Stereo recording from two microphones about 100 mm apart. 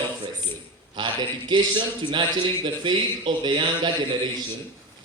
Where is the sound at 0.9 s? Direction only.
50° right (ahead or behind).